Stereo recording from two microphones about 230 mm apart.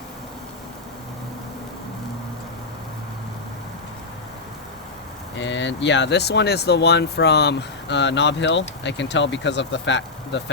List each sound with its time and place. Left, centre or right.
5.4 s speech: left